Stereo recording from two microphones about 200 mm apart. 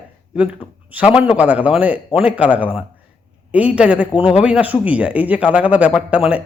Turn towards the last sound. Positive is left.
turn(degrees=-5)  # may be behind; listen again after turning